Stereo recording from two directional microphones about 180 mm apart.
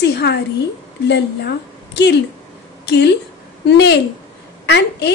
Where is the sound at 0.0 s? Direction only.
70° left (ahead or behind).